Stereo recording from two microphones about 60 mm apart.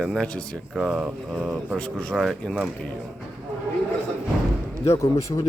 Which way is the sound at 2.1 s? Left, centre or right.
Centre.